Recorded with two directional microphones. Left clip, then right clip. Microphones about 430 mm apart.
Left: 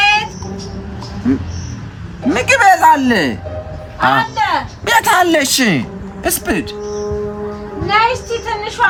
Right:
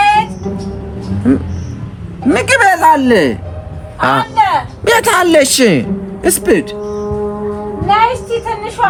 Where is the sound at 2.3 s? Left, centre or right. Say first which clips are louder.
Even; centre.